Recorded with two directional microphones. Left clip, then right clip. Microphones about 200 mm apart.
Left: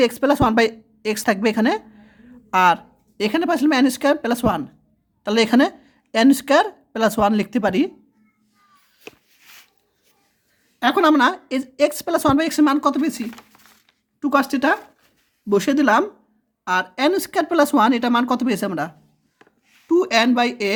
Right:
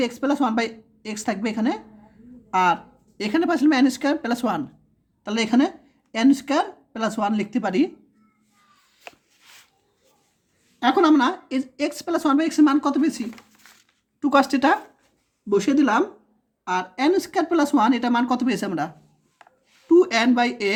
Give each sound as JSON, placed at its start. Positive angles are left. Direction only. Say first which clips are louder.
{"t": 0.0, "sound": "a woman's voice", "louder": "left 6 dB", "side_deg": 35}
{"t": 5.2, "sound": "a woman's voice", "louder": "left 5 dB", "side_deg": 35}
{"t": 10.8, "sound": "a woman's voice", "louder": "left 2 dB", "side_deg": 30}
{"t": 15.4, "sound": "a woman's voice", "louder": "left 3 dB", "side_deg": 40}
{"t": 19.9, "sound": "a woman's voice", "louder": "even", "side_deg": 30}